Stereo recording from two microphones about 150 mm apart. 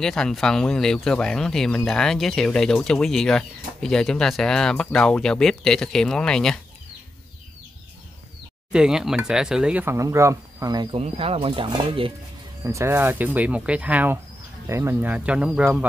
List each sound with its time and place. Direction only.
0.0 s speech: 5° left (ahead or behind)
8.7 s speech: 5° right (ahead or behind); by 11.0 s 25° right (ahead or behind)
11.0 s speech: 40° right (ahead or behind)
12.6 s speech: 20° right (ahead or behind)